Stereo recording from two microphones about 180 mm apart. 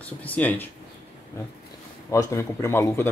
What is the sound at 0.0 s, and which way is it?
Speech, 10° left (ahead or behind).